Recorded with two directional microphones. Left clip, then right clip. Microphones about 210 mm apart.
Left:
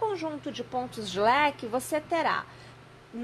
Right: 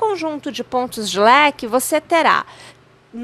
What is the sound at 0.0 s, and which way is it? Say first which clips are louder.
A woman's voice: right 11 dB; 45° right (ahead or behind).